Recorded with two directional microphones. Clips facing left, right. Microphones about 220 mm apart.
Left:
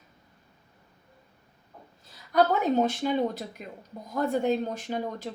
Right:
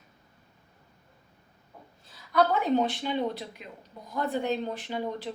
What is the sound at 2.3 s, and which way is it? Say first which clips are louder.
A woman's voice: left 1 dB; 45° left (ahead or behind).